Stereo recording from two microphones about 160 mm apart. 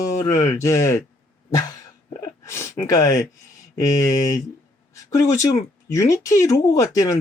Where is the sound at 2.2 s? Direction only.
20° left (ahead or behind).